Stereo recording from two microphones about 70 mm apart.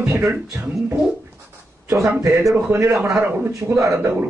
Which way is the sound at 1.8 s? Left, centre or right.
Right.